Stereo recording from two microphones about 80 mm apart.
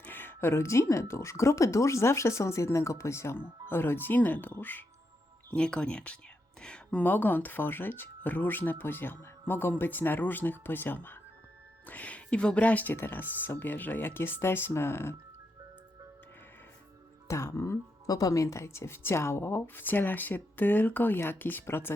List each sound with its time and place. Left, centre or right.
0.0 s speech: left
5.5 s speech: centre
7.0 s a woman's voice: left
17.2 s a woman's voice: left